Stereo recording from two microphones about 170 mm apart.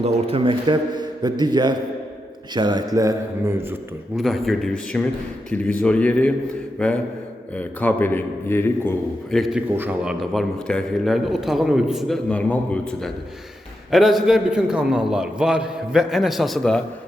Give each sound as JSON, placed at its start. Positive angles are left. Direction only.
{"t": 0.0, "sound": "a man's voice", "side_deg": -35}
{"t": 4.2, "sound": "a man's voice", "side_deg": 0}
{"t": 9.3, "sound": "a man's voice", "side_deg": 0}